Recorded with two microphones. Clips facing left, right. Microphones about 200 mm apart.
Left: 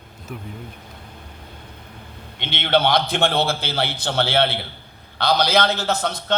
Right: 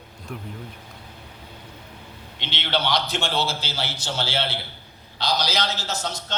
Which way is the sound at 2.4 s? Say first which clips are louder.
Left 7 dB; 55° left (ahead or behind).